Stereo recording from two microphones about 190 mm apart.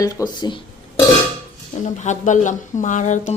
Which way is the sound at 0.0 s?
20° left (ahead or behind).